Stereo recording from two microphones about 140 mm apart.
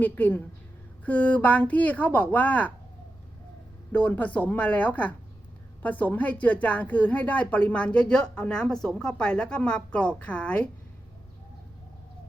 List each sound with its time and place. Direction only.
0.0 s a woman's voice: 10° left (ahead or behind)
3.9 s a woman's voice: 10° left (ahead or behind)